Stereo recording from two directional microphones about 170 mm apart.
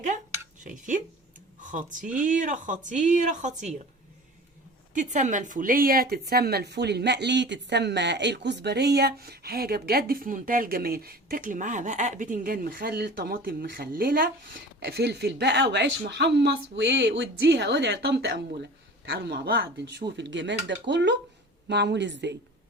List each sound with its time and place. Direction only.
0.6 s speech: 50° right (ahead or behind)
4.9 s speech: 45° right (ahead or behind)
14.8 s speech: 70° right (ahead or behind); by 22.4 s 90° right